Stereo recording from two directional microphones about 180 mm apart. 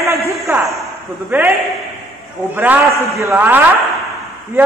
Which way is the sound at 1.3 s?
10° right (ahead or behind).